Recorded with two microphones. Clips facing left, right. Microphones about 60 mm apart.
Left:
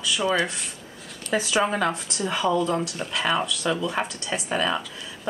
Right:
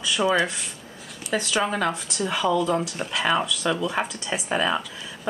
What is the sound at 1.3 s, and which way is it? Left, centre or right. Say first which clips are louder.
Speech: left 1 dB; centre.